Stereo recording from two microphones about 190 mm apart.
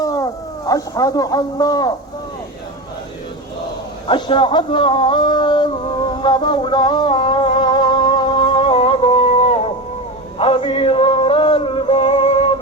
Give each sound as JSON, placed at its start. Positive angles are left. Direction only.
{"t": 0.0, "sound": "speech", "side_deg": 20}
{"t": 4.0, "sound": "a sound", "side_deg": 25}
{"t": 10.3, "sound": "male singing", "side_deg": 30}